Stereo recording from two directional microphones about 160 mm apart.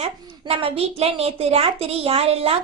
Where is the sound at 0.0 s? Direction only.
40° right (ahead or behind).